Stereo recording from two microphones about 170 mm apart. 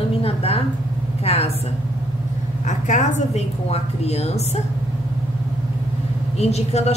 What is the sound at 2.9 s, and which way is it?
A woman's voice, 45° left (ahead or behind).